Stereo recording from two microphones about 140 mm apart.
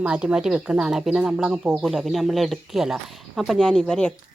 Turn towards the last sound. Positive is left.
turn(degrees=5)  # may be behind; listen again after turning